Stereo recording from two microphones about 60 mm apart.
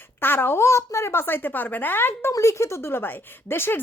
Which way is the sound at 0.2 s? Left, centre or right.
Left.